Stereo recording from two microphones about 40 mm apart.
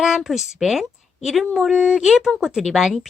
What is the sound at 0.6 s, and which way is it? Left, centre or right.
A woman's voice, centre.